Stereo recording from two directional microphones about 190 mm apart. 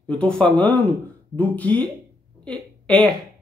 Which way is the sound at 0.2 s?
5° left (ahead or behind).